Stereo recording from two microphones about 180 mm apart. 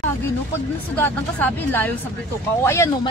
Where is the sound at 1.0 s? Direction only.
10° left (ahead or behind).